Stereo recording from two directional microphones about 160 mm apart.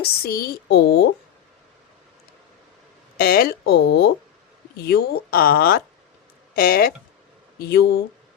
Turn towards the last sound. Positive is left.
turn(degrees=80)